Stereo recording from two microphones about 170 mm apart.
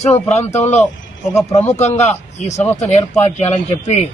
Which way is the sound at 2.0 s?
40° left (ahead or behind).